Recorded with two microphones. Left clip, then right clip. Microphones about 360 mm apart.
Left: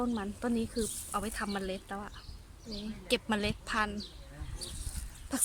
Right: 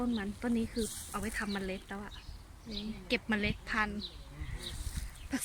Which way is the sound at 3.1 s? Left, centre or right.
Centre.